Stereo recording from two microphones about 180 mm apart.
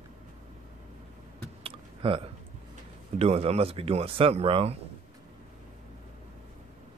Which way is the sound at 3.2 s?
35° right (ahead or behind).